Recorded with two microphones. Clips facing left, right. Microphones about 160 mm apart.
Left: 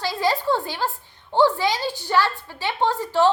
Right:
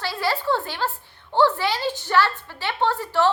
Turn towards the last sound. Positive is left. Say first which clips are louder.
# left 2 dB
turn(degrees=15)  # may be behind; listen again after turning